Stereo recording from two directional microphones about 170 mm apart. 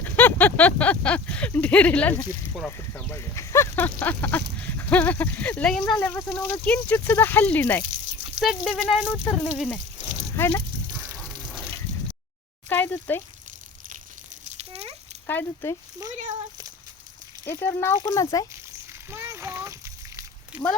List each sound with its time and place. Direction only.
0.0 s speech: 10° left (ahead or behind)
8.4 s speech: centre (ahead or behind)
11.2 s water: centre (ahead or behind)
12.6 s speech: 10° left (ahead or behind)
14.6 s dog: 35° right (ahead or behind)
15.3 s speech: 10° left (ahead or behind)
17.4 s speech: 15° left (ahead or behind)
19.1 s a sound: 15° right (ahead or behind)